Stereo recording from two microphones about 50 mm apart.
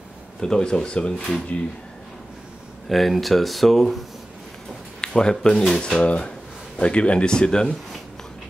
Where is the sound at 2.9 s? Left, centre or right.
Centre.